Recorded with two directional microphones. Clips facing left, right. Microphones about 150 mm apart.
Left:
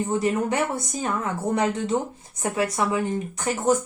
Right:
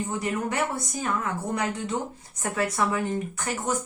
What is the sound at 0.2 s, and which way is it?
A woman's voice, 25° left (ahead or behind).